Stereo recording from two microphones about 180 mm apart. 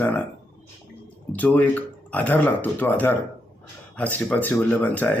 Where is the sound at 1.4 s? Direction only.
10° left (ahead or behind).